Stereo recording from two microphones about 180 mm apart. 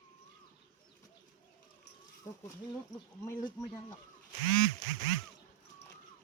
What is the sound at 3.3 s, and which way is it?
Speech, 20° left (ahead or behind).